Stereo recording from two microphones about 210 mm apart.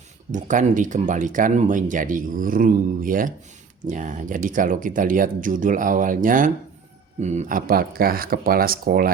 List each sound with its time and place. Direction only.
0.3 s speech: 35° right (ahead or behind)